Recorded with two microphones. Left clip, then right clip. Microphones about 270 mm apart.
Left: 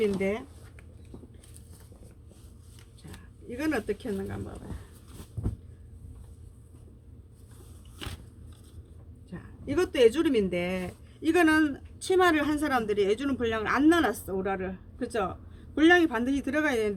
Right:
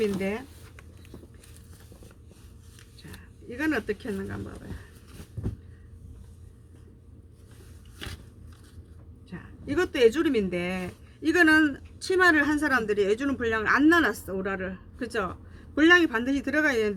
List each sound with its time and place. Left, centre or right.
0.0 s speech: centre
3.1 s speech: centre
5.4 s a sound: centre
7.9 s biting: centre
9.3 s speech: centre